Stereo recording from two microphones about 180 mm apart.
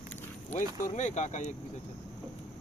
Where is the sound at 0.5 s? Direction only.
45° left (ahead or behind).